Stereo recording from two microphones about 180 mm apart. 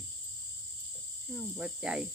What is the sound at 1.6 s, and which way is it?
Cricket, 5° right (ahead or behind).